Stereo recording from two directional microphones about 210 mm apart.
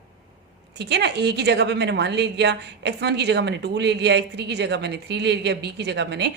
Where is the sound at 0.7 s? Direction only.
55° right (ahead or behind).